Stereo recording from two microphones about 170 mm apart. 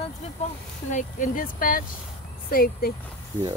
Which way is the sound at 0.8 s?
50° left (ahead or behind).